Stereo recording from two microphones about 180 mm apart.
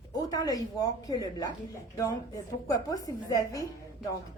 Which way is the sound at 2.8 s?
20° left (ahead or behind).